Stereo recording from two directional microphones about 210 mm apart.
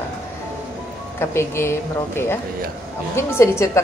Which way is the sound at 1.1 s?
10° left (ahead or behind).